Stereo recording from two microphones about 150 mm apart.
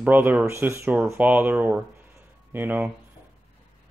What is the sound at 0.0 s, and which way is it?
Speech, 10° right (ahead or behind).